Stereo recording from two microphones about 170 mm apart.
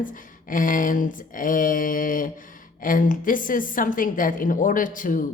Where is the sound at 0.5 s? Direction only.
50° left (ahead or behind).